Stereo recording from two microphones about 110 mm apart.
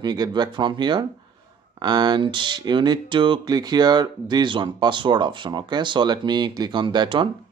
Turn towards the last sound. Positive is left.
turn(degrees=-45)  # may be behind; listen again after turning